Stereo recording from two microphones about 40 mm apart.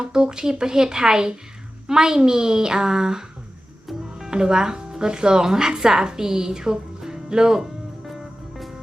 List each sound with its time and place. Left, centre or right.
0.0 s speech: centre
4.3 s speech: centre